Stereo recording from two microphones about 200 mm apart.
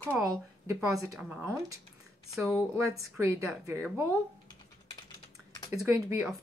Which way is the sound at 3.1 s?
15° right (ahead or behind).